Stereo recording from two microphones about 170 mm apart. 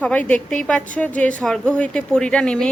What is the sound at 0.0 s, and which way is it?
A woman's voice, 10° left (ahead or behind).